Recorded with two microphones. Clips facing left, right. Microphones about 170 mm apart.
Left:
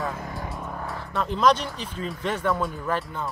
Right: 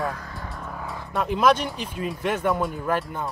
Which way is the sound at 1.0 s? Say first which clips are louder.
Right 1 dB; 15° right (ahead or behind).